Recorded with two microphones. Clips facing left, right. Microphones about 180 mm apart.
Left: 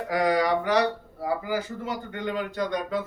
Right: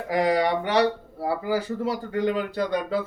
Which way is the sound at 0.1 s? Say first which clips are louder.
Right 1 dB; 30° right (ahead or behind).